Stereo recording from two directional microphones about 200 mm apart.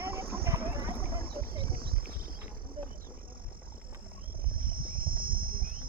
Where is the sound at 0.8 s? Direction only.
10° right (ahead or behind).